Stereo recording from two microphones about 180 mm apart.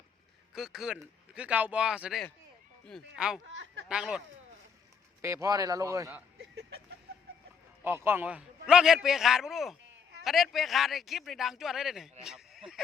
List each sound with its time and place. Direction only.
0.5 s a man's voice: centre (ahead or behind)
3.4 s speech: 90° right
3.8 s a man's voice: 5° right (ahead or behind)
5.2 s a man's voice: 15° right (ahead or behind)
6.4 s vehicle: 70° right (ahead or behind)
7.9 s a man's voice: 10° right (ahead or behind)